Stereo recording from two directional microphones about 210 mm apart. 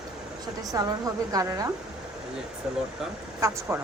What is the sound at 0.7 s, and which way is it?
A woman's voice, 15° right (ahead or behind).